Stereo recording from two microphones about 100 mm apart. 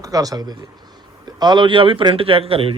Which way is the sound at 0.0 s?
35° right (ahead or behind).